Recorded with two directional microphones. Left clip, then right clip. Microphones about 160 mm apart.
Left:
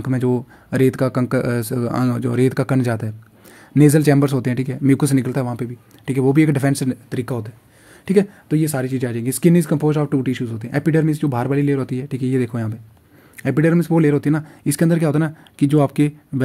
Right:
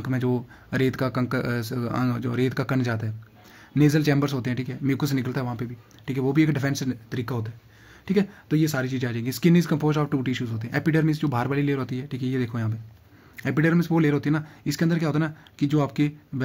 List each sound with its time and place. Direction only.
0.0 s speech: 30° left (ahead or behind)
8.0 s speech: 40° left (ahead or behind)
8.5 s speech: 25° left (ahead or behind)